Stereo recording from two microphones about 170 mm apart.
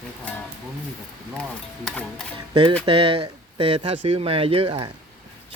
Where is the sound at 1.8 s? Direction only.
5° left (ahead or behind).